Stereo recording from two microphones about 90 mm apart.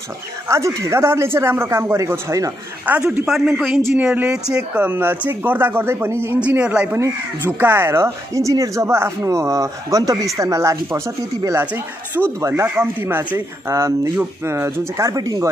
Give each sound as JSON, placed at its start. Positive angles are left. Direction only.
{"t": 0.5, "sound": "speech", "side_deg": -35}
{"t": 2.9, "sound": "a man's voice", "side_deg": -15}
{"t": 3.3, "sound": "speech", "side_deg": 0}
{"t": 3.9, "sound": "a man's voice", "side_deg": -20}
{"t": 4.8, "sound": "speech", "side_deg": -20}
{"t": 6.4, "sound": "a man's voice", "side_deg": -10}
{"t": 6.9, "sound": "speech", "side_deg": -30}
{"t": 11.6, "sound": "speech", "side_deg": -20}
{"t": 12.4, "sound": "speech", "side_deg": -30}